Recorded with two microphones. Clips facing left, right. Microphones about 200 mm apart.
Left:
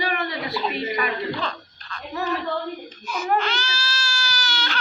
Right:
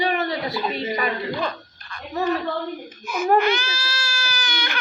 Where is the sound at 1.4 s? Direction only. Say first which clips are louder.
Right 3 dB; 10° right (ahead or behind).